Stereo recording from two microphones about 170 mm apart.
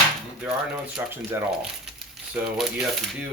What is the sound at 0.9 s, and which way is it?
Speech, 15° right (ahead or behind).